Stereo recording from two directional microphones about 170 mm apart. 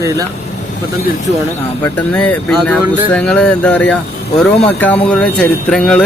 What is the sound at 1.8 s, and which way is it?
Speech, 10° left (ahead or behind).